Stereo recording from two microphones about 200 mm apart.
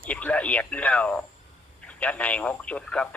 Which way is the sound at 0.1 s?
5° left (ahead or behind).